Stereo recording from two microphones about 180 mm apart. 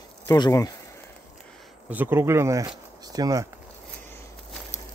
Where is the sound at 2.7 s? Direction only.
20° right (ahead or behind).